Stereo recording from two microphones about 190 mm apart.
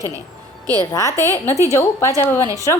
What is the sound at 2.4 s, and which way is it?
Speech, 15° right (ahead or behind).